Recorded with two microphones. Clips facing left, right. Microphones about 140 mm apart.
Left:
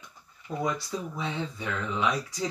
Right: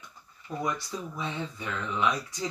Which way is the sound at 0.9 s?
25° left (ahead or behind).